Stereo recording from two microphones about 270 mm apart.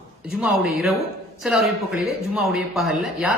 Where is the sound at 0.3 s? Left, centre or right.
Centre.